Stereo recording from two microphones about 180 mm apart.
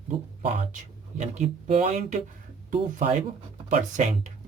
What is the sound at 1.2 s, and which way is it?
Speech, 40° right (ahead or behind).